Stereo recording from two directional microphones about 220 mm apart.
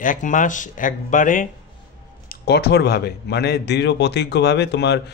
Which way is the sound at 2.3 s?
45° left (ahead or behind).